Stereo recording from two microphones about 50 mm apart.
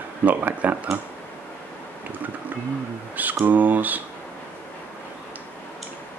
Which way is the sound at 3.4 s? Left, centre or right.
Right.